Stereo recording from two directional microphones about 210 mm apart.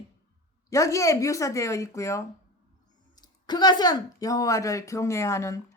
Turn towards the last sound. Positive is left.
turn(degrees=15)  # may be behind; listen again after turning